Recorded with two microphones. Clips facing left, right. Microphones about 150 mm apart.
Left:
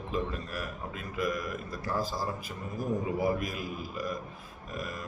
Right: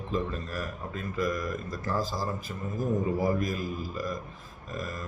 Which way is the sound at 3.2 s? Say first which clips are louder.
Right 2 dB; 40° right (ahead or behind).